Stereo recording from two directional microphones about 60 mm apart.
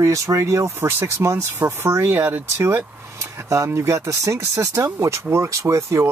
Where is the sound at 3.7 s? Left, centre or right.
Right.